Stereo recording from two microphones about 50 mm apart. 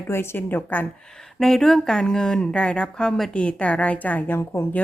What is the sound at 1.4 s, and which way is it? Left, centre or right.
Speech, centre.